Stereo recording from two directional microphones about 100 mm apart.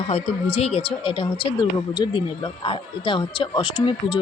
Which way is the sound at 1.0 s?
60° left (ahead or behind).